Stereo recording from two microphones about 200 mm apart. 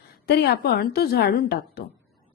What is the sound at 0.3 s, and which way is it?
A woman's voice, 55° left (ahead or behind).